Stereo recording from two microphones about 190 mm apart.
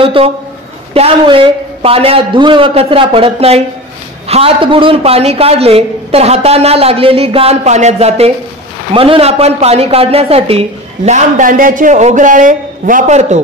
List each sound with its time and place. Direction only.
0.0 s a man's voice: 30° right (ahead or behind)